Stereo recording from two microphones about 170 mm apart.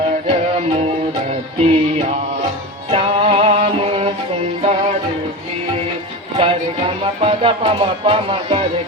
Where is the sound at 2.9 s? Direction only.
35° right (ahead or behind).